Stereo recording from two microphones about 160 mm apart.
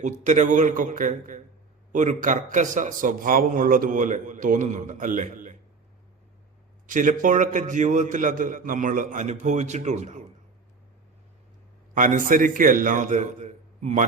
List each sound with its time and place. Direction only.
0.0 s a man's voice: 50° right (ahead or behind)
6.8 s a man's voice: 55° right (ahead or behind)
11.9 s a man's voice: 55° right (ahead or behind)